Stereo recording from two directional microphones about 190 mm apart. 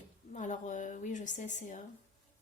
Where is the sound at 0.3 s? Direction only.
40° left (ahead or behind).